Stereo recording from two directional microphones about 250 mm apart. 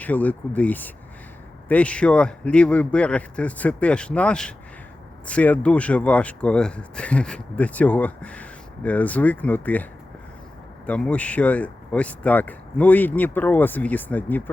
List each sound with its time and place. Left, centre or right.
0.0 s speech: centre
10.8 s speech: centre